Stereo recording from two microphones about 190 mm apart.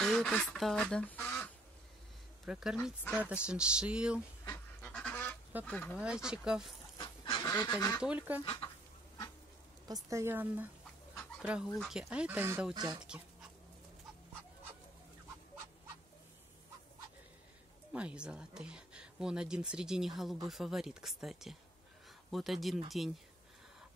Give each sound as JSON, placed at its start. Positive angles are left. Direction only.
{"t": 0.0, "sound": "duck", "side_deg": 5}
{"t": 2.4, "sound": "speech", "side_deg": -5}
{"t": 4.5, "sound": "goose", "side_deg": 5}
{"t": 5.7, "sound": "speech", "side_deg": 5}
{"t": 5.9, "sound": "speech", "side_deg": -5}
{"t": 7.0, "sound": "goose", "side_deg": 25}
{"t": 7.6, "sound": "speech", "side_deg": 20}
{"t": 8.0, "sound": "speech", "side_deg": -5}
{"t": 9.8, "sound": "speech", "side_deg": -20}
{"t": 17.9, "sound": "speech", "side_deg": -5}